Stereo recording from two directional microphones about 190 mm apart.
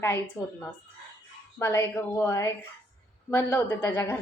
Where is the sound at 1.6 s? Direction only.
15° left (ahead or behind).